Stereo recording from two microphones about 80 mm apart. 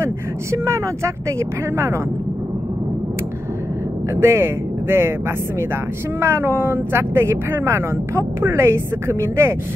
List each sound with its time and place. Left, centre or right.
0.0 s speech: right
4.1 s speech: right
6.1 s speech: right